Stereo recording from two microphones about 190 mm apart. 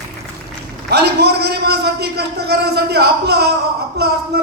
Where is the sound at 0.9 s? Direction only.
60° right (ahead or behind).